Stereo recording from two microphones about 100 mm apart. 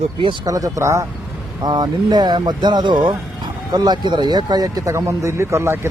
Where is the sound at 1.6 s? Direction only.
45° right (ahead or behind).